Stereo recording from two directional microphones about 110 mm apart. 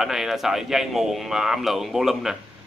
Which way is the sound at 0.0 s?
5° right (ahead or behind).